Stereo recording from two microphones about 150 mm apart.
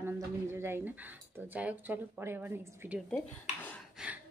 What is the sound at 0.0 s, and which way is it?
Speech, 15° right (ahead or behind).